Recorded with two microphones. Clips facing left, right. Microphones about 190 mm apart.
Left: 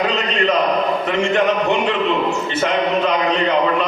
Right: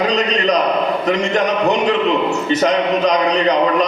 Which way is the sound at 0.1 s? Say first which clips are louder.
Right 2 dB; 40° right (ahead or behind).